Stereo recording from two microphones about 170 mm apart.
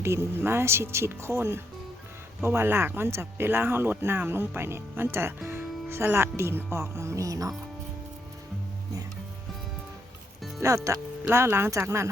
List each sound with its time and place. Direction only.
0.0 s speech: 15° right (ahead or behind)
10.6 s speech: 20° right (ahead or behind)